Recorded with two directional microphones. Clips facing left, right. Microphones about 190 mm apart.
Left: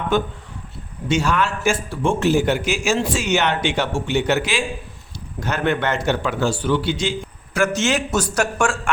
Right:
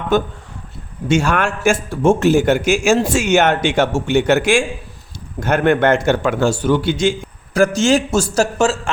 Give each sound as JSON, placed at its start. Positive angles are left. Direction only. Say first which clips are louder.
{"t": 0.1, "sound": "a man's voice", "louder": "right 5 dB", "side_deg": -45}
{"t": 7.8, "sound": "speech", "louder": "right 6 dB", "side_deg": -35}